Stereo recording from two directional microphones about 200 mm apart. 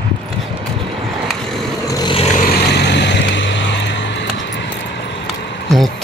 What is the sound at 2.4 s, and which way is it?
Vehicle, 60° left (ahead or behind).